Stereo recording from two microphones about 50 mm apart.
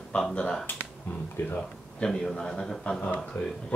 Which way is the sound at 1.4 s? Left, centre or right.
Left.